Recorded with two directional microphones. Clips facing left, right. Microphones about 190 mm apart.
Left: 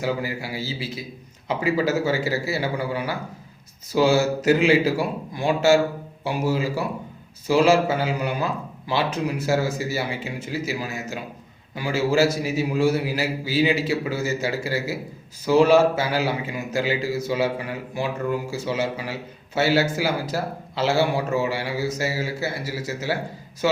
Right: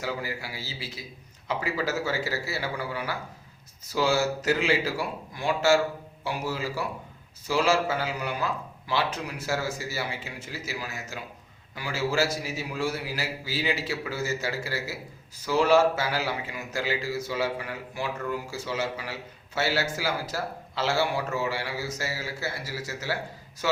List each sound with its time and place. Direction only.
0.0 s a man's voice: 20° left (ahead or behind)